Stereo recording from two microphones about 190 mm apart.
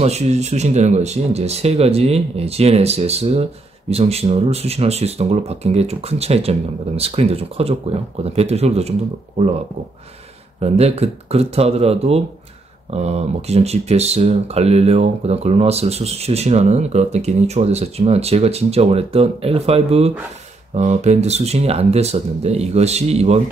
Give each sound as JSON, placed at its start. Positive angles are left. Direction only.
{"t": 0.0, "sound": "speech", "side_deg": -35}
{"t": 10.6, "sound": "speech", "side_deg": -35}